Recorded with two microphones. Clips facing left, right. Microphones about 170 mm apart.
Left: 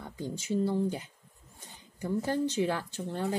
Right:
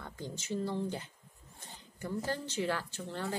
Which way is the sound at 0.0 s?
15° left (ahead or behind).